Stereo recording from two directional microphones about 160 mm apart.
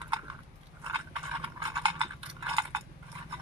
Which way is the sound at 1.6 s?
35° right (ahead or behind).